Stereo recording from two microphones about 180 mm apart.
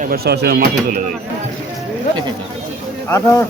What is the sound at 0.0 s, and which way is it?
Speech, 60° right (ahead or behind).